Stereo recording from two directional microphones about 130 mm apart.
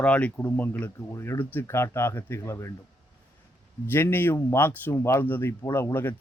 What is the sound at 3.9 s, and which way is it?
Speech, 15° left (ahead or behind).